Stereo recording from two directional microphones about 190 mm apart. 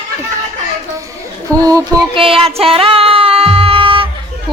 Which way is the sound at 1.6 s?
20° right (ahead or behind).